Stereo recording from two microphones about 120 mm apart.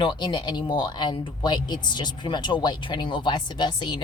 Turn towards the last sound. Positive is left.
turn(degrees=40)  # may be behind; listen again after turning